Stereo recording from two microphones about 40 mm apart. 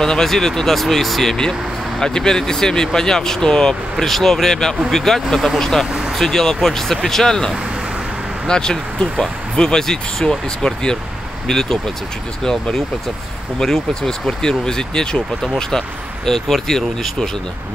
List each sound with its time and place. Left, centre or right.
0.0 s speech: centre
1.5 s speech: centre